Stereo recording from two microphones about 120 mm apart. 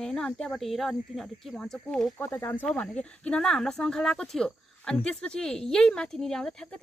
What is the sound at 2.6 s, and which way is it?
Speech, 10° left (ahead or behind).